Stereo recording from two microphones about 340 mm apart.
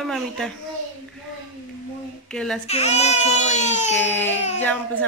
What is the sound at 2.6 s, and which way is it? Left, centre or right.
Speech, centre.